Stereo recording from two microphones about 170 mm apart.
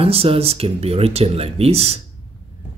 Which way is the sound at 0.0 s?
35° right (ahead or behind).